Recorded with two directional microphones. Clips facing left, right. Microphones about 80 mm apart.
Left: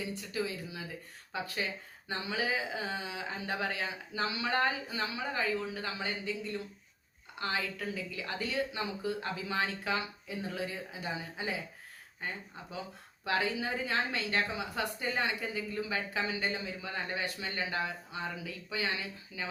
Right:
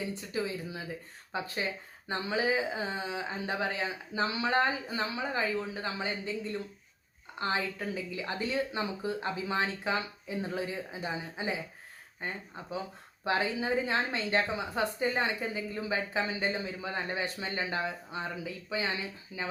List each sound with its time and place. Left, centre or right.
0.1 s a woman's voice: right